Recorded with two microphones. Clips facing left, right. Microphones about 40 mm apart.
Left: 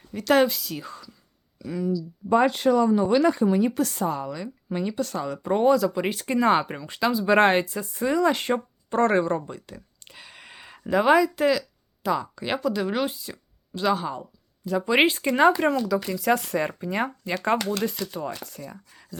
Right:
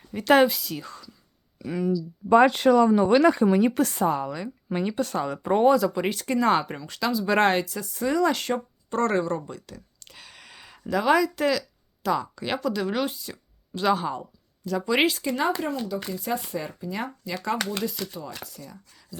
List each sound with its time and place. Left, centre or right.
0.1 s speech: centre
0.4 s speech: centre
1.5 s speech: right
2.3 s speech: right
3.8 s speech: right; by 14.3 s centre
14.6 s speech: centre
15.3 s speech: left
16.1 s speech: left